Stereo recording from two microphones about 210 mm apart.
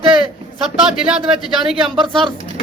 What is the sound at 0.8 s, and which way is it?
A man's voice, 5° right (ahead or behind).